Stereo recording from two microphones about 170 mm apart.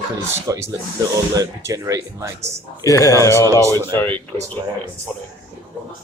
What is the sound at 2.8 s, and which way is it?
Speech, 20° left (ahead or behind).